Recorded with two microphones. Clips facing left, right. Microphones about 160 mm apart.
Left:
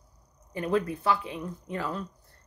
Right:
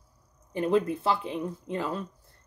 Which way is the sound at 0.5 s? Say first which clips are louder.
Right 3 dB; 25° right (ahead or behind).